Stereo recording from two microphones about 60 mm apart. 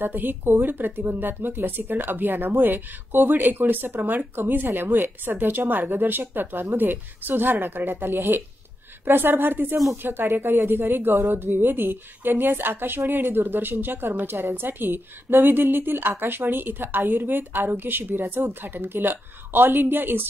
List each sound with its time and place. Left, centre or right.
0.0 s a woman's voice: right